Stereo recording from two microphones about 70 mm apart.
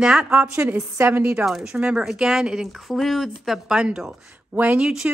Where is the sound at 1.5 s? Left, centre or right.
Centre.